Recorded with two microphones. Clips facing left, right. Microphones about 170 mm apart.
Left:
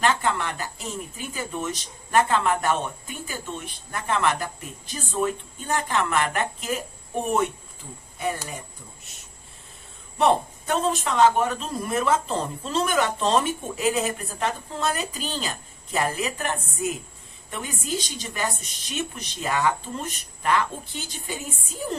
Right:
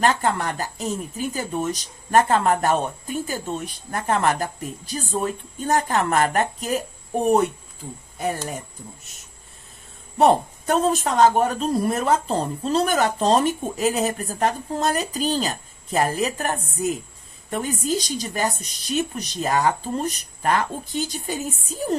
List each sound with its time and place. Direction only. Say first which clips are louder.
0.0 s speech: right 3 dB; 40° right (ahead or behind)
10.2 s speech: right 4 dB; 40° right (ahead or behind)